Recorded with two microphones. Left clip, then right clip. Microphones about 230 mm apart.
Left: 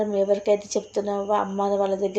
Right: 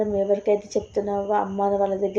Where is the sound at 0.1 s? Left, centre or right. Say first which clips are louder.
Even; centre.